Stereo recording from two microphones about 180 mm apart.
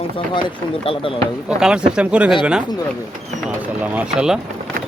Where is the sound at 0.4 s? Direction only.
30° left (ahead or behind).